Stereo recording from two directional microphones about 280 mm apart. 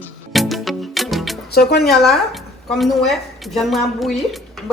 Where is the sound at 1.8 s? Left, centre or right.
Centre.